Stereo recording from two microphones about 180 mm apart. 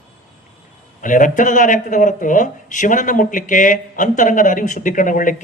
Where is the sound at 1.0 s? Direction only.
45° left (ahead or behind).